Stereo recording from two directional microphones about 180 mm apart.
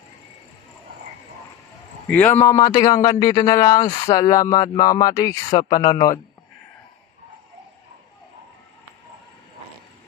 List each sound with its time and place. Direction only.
2.0 s a man's voice: 10° left (ahead or behind)